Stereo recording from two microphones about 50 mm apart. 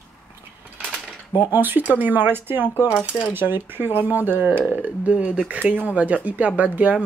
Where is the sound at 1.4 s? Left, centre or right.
Right.